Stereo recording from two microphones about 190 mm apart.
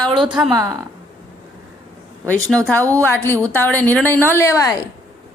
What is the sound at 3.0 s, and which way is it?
Speech, 10° left (ahead or behind).